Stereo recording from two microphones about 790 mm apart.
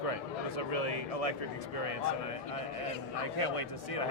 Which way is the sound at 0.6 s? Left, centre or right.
Left.